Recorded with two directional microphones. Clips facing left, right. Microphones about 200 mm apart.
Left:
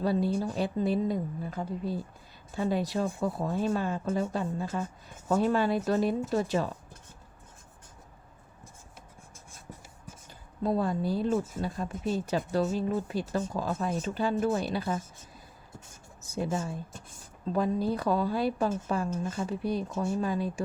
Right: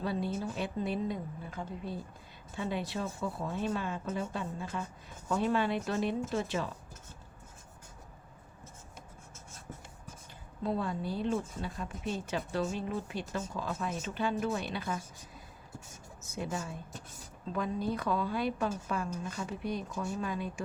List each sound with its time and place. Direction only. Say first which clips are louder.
0.0 s speech: left 6 dB; 35° left (ahead or behind)
10.6 s speech: left 5 dB; 40° left (ahead or behind)
16.2 s speech: left 6 dB; 35° left (ahead or behind)